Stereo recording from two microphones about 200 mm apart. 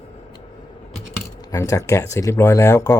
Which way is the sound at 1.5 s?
15° left (ahead or behind).